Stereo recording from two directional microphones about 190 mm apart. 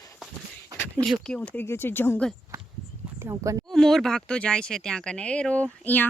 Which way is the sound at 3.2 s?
15° right (ahead or behind).